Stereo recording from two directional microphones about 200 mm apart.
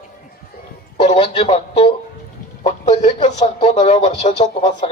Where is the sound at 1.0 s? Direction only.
25° left (ahead or behind).